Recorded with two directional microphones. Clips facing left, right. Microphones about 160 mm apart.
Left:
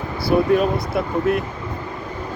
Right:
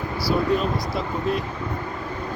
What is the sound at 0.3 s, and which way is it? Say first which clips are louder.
Speech: left 6 dB; 60° left (ahead or behind).